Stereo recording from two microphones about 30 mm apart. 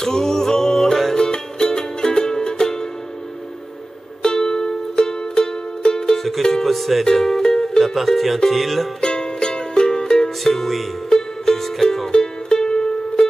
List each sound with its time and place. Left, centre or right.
0.0 s music: centre
1.1 s music: left
4.2 s music: left
6.1 s music: centre
7.2 s music: centre
8.5 s speech: centre
9.0 s music: left
10.4 s music: centre; by 13.2 s left